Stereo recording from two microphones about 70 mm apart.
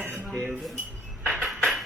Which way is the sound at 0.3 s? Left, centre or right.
Right.